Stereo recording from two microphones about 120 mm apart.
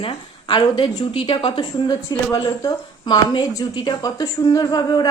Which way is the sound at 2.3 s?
30° left (ahead or behind).